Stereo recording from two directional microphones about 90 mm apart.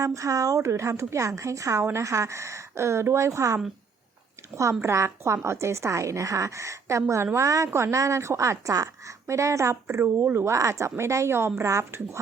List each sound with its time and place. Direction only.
0.0 s speech: 35° right (ahead or behind)